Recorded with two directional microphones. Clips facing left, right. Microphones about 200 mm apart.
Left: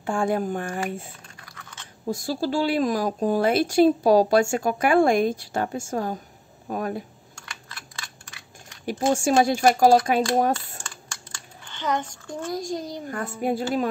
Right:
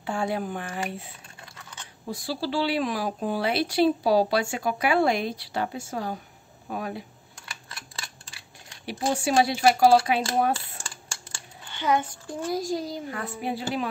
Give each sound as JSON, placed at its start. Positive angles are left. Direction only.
{"t": 0.0, "sound": "speech", "side_deg": 50}
{"t": 2.0, "sound": "speech", "side_deg": 45}
{"t": 8.8, "sound": "speech", "side_deg": 45}
{"t": 10.8, "sound": "typing", "side_deg": -30}
{"t": 11.7, "sound": "a child's voice", "side_deg": -10}
{"t": 13.4, "sound": "speech", "side_deg": 45}